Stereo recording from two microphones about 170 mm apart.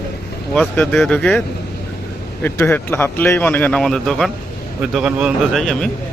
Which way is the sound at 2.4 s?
10° left (ahead or behind).